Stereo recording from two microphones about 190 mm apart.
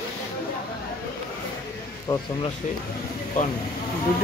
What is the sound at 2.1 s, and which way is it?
Speech, 15° left (ahead or behind).